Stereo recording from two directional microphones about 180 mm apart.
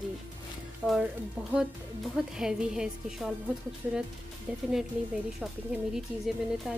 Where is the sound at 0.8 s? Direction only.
5° left (ahead or behind).